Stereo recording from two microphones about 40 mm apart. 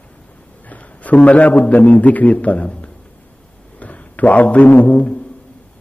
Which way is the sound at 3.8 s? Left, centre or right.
Left.